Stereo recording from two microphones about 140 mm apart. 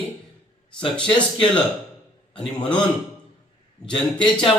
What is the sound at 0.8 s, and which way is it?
Speech, 5° left (ahead or behind).